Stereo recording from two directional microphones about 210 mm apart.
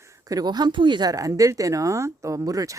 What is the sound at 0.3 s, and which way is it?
Speech, 20° right (ahead or behind).